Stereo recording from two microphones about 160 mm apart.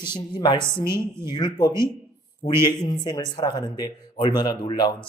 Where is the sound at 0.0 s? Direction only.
30° left (ahead or behind).